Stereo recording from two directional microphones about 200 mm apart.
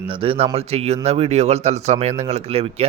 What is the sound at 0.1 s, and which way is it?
Speech, 30° right (ahead or behind).